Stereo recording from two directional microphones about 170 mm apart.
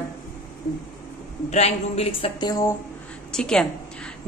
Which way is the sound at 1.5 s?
40° left (ahead or behind).